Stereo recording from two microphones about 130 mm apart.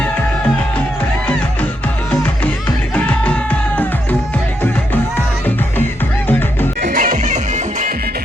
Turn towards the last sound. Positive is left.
turn(degrees=-70)  # may be behind; listen again after turning